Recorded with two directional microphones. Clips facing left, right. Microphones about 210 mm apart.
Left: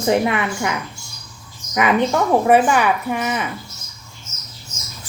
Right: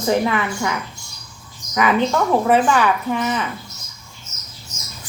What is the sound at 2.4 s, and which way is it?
A woman's voice, 10° left (ahead or behind).